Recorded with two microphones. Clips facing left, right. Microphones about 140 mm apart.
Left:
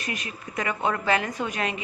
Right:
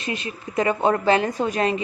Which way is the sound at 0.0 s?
25° right (ahead or behind).